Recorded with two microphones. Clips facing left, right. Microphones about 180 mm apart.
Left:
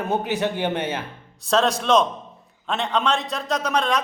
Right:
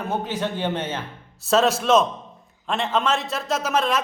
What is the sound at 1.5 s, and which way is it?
A man's voice, 5° right (ahead or behind).